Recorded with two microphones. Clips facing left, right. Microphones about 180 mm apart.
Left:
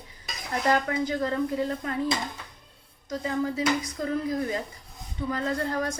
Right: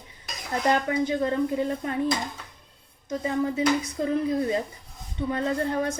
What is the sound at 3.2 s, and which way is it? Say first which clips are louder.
A woman's voice: right 2 dB; 25° right (ahead or behind).